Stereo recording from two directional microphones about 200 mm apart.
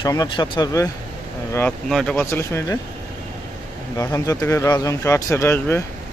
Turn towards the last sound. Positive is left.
turn(degrees=10)  # may be behind; listen again after turning